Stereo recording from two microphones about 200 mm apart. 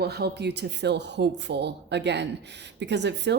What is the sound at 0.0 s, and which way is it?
Speech, 55° right (ahead or behind).